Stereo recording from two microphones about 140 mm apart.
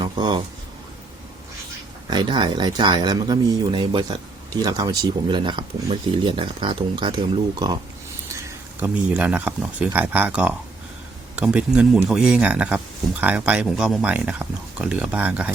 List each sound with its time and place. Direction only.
0.0 s speech: 35° right (ahead or behind)
2.0 s speech: 30° right (ahead or behind)
8.3 s a sound: 20° right (ahead or behind)
9.0 s speech: 10° right (ahead or behind)